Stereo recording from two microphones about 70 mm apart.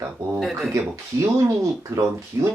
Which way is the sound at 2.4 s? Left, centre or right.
Right.